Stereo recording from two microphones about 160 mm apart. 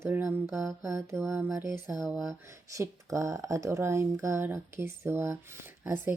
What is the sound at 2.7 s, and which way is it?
Speech, 20° right (ahead or behind).